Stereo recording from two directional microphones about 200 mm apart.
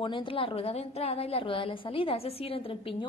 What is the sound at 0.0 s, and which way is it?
A woman's voice, 25° left (ahead or behind).